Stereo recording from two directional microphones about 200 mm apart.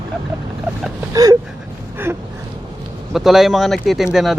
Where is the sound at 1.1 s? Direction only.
15° right (ahead or behind).